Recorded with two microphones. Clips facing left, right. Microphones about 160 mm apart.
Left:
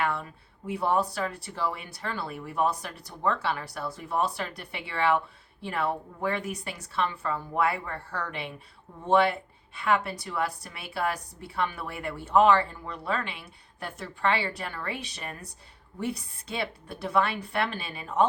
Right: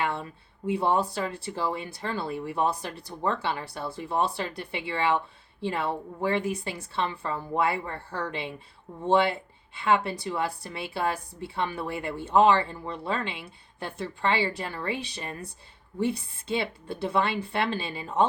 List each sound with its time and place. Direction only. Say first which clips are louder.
0.0 s speech: even; 25° right (ahead or behind)